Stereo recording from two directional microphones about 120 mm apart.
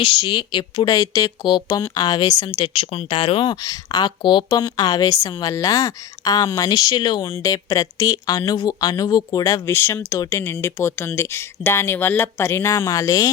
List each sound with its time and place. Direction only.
0.0 s speech: 45° left (ahead or behind)
2.5 s speech: 50° left (ahead or behind); by 13.3 s 30° left (ahead or behind)